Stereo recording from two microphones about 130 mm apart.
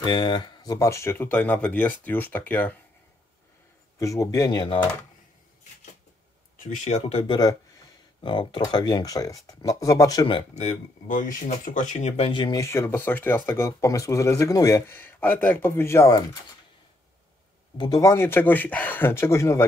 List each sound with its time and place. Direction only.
0.0 s speech: 35° left (ahead or behind); by 2.7 s 15° left (ahead or behind)
4.0 s speech: 25° left (ahead or behind)
6.6 s speech: 65° left (ahead or behind)
7.2 s speech: 30° left (ahead or behind)
10.6 s speech: 90° left; by 12.3 s 60° left (ahead or behind)
12.3 s speech: 40° left (ahead or behind)
12.5 s speech: 20° left (ahead or behind)
17.7 s speech: 30° left (ahead or behind)